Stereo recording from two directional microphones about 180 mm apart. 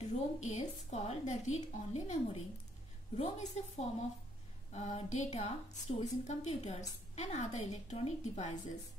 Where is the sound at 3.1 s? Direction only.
35° left (ahead or behind).